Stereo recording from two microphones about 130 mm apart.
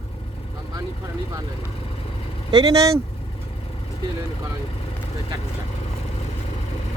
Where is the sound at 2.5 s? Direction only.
30° right (ahead or behind).